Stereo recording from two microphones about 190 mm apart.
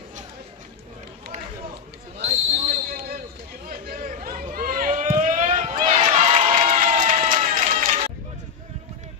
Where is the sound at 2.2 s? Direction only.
45° right (ahead or behind).